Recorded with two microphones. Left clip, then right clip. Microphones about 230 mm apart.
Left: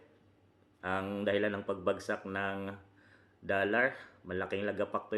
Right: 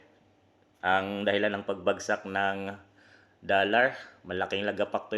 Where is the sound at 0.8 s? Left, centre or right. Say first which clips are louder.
Right 9 dB; centre.